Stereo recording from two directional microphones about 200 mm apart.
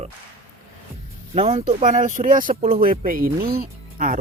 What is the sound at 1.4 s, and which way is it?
Speech, 30° right (ahead or behind).